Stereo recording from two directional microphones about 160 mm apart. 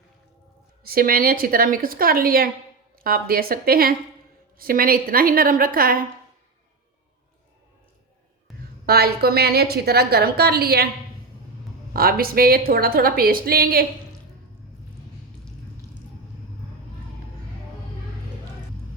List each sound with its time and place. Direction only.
0.9 s a woman's voice: 65° right (ahead or behind)
8.5 s a sound: centre (ahead or behind)
8.9 s a woman's voice: 75° right (ahead or behind)
11.9 s a woman's voice: 70° right (ahead or behind)